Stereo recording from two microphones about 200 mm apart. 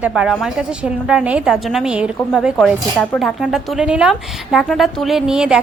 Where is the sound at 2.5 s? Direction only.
10° left (ahead or behind).